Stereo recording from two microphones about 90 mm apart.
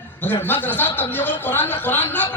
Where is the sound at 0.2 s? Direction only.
20° left (ahead or behind).